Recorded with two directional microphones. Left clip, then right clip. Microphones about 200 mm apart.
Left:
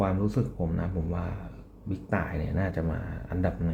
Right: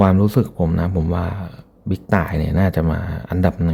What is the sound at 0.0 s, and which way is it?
Speech, 50° right (ahead or behind).